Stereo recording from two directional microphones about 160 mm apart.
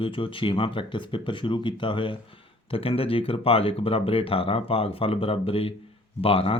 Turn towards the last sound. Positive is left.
turn(degrees=35)  # may be behind; listen again after turning